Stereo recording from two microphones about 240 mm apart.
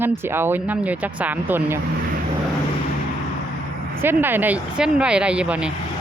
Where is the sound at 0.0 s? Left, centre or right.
Centre.